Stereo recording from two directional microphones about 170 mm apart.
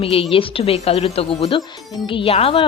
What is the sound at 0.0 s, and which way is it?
A woman's voice, 35° left (ahead or behind).